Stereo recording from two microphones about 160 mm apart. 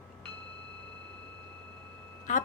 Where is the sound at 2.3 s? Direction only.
55° left (ahead or behind).